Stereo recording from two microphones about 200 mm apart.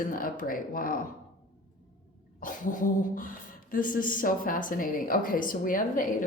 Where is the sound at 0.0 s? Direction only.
45° left (ahead or behind).